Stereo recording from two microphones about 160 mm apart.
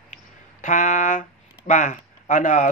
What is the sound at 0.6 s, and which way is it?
Speech, 55° left (ahead or behind).